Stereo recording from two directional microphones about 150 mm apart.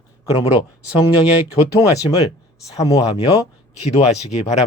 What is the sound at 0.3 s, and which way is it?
Speech, 40° left (ahead or behind).